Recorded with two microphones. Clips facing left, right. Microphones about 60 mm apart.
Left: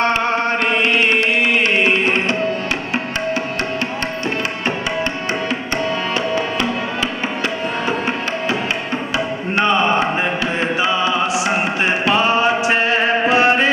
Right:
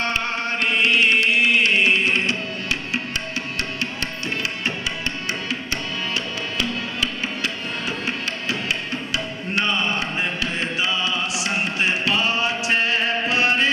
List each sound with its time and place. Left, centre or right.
0.0 s music: left
9.1 s music: left